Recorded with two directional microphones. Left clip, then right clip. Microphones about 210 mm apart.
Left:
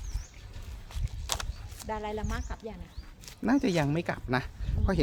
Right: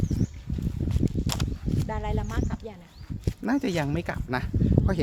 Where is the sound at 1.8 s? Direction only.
15° right (ahead or behind).